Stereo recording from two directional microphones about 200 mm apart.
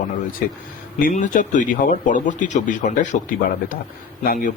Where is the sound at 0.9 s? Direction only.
40° left (ahead or behind).